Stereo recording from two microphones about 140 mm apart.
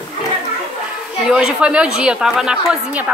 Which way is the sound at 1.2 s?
5° right (ahead or behind).